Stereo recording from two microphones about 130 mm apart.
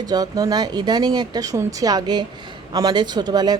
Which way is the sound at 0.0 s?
30° right (ahead or behind).